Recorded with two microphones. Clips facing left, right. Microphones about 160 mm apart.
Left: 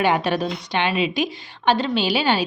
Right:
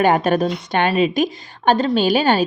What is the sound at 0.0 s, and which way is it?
A woman's voice, 45° right (ahead or behind).